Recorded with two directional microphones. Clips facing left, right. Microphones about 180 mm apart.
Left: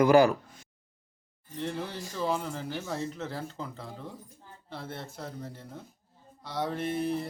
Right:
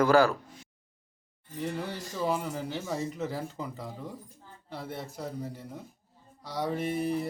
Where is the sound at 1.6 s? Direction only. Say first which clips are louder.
Even; 5° right (ahead or behind).